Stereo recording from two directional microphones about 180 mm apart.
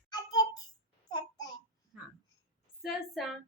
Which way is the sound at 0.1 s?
20° left (ahead or behind).